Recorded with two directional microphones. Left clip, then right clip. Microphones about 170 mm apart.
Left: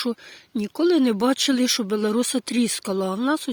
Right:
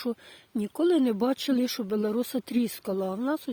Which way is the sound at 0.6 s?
15° left (ahead or behind).